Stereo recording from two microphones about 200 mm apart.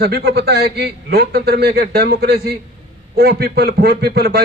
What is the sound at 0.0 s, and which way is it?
A man's voice, 55° right (ahead or behind).